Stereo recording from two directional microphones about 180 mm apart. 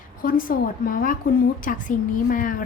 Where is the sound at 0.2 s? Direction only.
50° left (ahead or behind).